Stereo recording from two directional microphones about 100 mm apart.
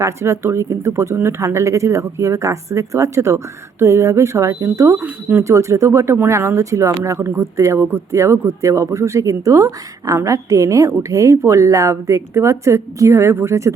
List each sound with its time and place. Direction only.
0.0 s speech: 25° right (ahead or behind)